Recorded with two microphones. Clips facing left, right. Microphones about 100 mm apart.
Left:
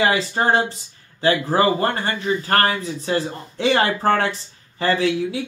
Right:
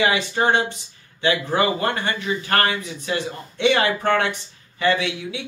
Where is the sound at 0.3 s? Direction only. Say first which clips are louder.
Left 1 dB; 35° left (ahead or behind).